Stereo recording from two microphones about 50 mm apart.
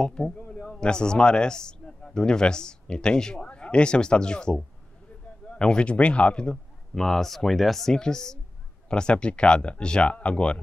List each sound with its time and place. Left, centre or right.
0.0 s a man's voice: centre